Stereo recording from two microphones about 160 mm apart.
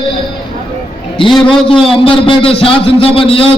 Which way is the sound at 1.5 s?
35° left (ahead or behind).